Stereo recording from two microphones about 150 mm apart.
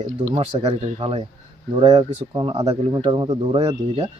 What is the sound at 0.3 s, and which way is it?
Speech, 40° right (ahead or behind).